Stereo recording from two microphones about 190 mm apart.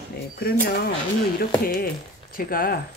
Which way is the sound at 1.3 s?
50° left (ahead or behind).